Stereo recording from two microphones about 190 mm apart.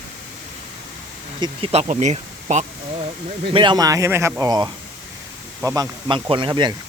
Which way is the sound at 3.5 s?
25° right (ahead or behind).